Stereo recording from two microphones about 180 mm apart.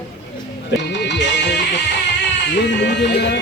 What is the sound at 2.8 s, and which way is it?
Music, 70° left (ahead or behind).